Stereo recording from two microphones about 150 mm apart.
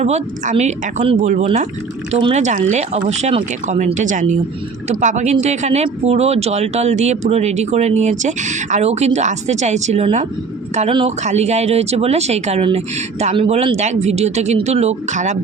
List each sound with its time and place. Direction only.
0.0 s speech: 45° right (ahead or behind)